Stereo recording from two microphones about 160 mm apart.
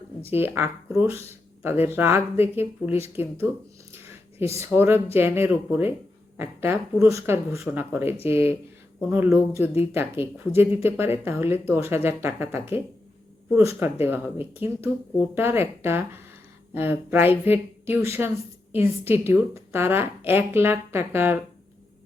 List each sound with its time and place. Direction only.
0.3 s speech: 15° right (ahead or behind)
3.9 s a sound: 15° right (ahead or behind)
4.5 s a woman's voice: 15° right (ahead or behind)